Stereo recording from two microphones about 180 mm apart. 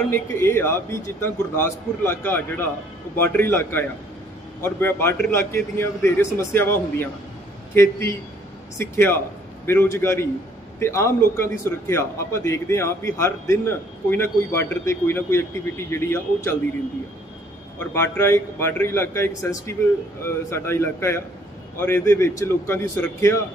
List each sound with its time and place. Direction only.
0.1 s a man's voice: 15° left (ahead or behind)
17.7 s a man's voice: 10° left (ahead or behind)